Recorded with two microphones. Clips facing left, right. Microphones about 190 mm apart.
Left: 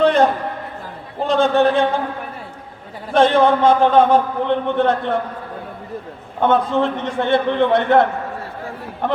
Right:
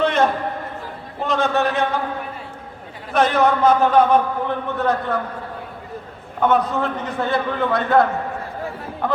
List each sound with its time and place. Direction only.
0.0 s a sound: 35° left (ahead or behind)
1.3 s a man's voice: 30° left (ahead or behind)
3.1 s a man's voice: 30° left (ahead or behind)
6.4 s a man's voice: 30° left (ahead or behind)